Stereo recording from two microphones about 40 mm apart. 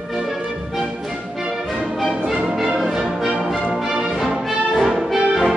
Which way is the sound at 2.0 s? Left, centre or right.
Centre.